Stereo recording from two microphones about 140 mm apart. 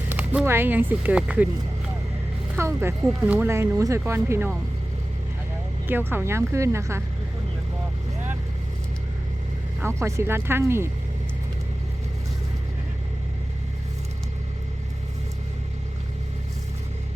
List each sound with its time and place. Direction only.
0.1 s speech: 10° right (ahead or behind)
2.6 s a woman's voice: 20° right (ahead or behind)
3.1 s speech: 5° right (ahead or behind)
5.9 s a woman's voice: 15° right (ahead or behind)
9.8 s speech: 20° right (ahead or behind)